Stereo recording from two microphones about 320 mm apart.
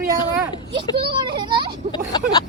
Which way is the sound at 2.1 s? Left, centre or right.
Centre.